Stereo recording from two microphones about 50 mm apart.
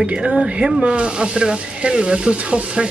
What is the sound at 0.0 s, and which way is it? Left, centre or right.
Speech, right.